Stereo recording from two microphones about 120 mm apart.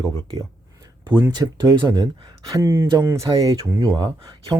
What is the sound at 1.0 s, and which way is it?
Speech, 35° right (ahead or behind).